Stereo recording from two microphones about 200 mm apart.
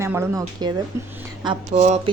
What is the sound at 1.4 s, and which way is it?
Speech, 30° right (ahead or behind).